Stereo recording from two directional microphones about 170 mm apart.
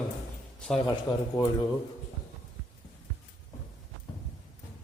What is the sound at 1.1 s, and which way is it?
Speech, 25° left (ahead or behind).